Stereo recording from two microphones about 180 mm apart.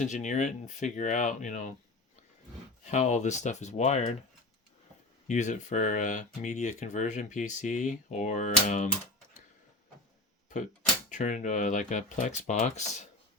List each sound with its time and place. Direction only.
0.0 s speech: 45° left (ahead or behind)
2.8 s speech: 40° left (ahead or behind)
5.3 s speech: 40° left (ahead or behind)
11.1 s speech: 45° left (ahead or behind)